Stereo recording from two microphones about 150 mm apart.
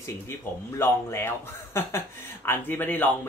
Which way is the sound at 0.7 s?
15° left (ahead or behind).